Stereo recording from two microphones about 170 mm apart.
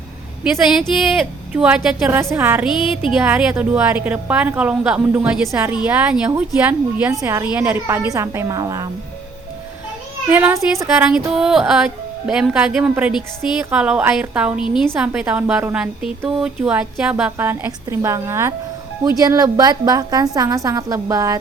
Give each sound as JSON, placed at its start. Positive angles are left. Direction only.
{"t": 0.8, "sound": "a woman's voice", "side_deg": -5}
{"t": 10.2, "sound": "a woman's voice", "side_deg": -10}
{"t": 10.8, "sound": "a woman's voice", "side_deg": -5}